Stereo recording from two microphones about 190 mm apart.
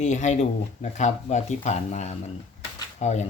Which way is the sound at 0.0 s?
40° left (ahead or behind).